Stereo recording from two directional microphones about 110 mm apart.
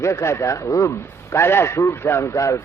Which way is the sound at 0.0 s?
25° left (ahead or behind).